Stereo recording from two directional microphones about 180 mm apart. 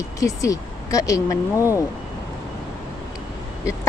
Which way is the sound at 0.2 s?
20° left (ahead or behind).